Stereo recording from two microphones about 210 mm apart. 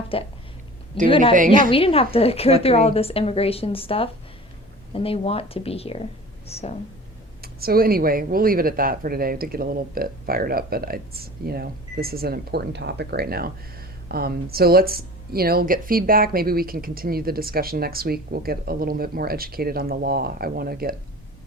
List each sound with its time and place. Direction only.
0.1 s a woman's voice: 25° left (ahead or behind)
7.4 s speech: 45° right (ahead or behind)